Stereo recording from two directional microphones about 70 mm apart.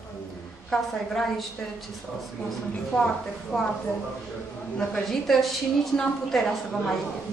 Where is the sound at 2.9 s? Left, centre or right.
Centre.